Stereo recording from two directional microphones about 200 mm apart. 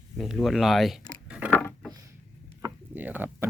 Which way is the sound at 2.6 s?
10° right (ahead or behind).